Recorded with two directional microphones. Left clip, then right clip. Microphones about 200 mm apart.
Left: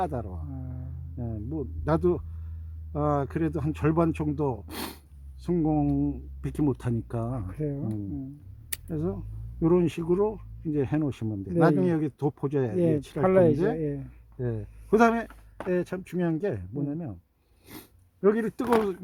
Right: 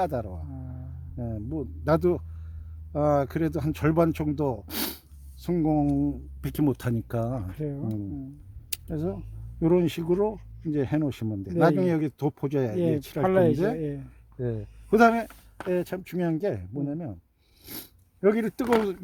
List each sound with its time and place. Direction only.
0.0 s speech: 30° right (ahead or behind)
0.5 s a sound: centre (ahead or behind)
1.1 s speech: 30° right (ahead or behind)
7.3 s speech: centre (ahead or behind)
8.9 s speech: 20° right (ahead or behind)
13.2 s speech: centre (ahead or behind)
14.3 s speech: 20° right (ahead or behind)
17.7 s a sound: 25° right (ahead or behind)